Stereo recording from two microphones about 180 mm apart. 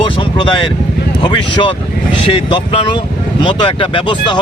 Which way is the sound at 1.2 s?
30° left (ahead or behind).